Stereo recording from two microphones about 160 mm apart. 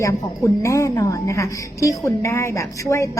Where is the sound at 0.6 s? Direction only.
20° left (ahead or behind).